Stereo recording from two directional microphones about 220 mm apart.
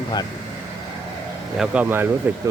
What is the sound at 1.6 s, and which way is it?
Speech, 5° right (ahead or behind).